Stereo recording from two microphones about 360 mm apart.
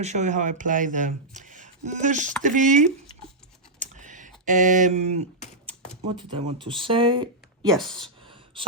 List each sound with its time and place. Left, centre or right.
0.0 s speech: centre
3.8 s computer keyboard: right
6.1 s speech: centre
7.7 s speech: centre